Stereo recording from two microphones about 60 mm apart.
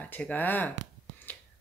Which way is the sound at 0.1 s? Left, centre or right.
Left.